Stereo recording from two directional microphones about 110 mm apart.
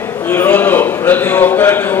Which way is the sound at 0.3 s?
15° left (ahead or behind).